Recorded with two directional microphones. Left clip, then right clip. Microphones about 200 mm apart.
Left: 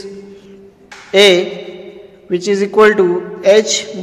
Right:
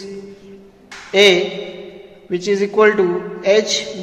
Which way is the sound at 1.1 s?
30° left (ahead or behind).